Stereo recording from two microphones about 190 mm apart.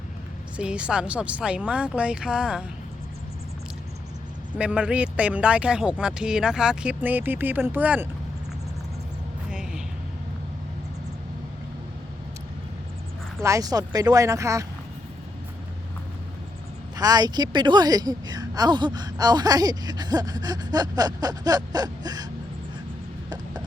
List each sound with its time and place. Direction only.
0.5 s speech: 5° right (ahead or behind)
4.5 s speech: 5° right (ahead or behind)
9.5 s a sound: 5° right (ahead or behind)
13.4 s speech: 15° right (ahead or behind)
17.0 s a woman's voice: 20° right (ahead or behind)